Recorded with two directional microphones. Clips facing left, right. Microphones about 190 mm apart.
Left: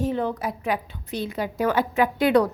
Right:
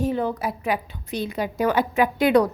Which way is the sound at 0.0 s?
10° right (ahead or behind).